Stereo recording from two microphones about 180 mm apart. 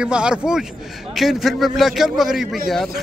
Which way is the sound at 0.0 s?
5° right (ahead or behind).